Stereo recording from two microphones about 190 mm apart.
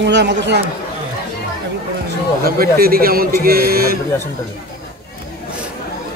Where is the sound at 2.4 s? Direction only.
50° right (ahead or behind).